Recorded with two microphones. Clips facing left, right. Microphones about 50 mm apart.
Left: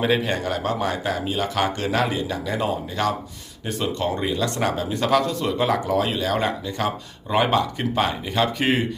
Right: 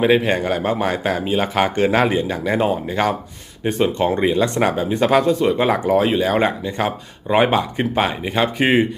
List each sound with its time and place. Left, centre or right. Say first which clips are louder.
0.0 s speech: right 6 dB; right